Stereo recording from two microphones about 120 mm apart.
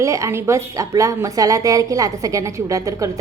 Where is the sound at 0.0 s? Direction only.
25° right (ahead or behind).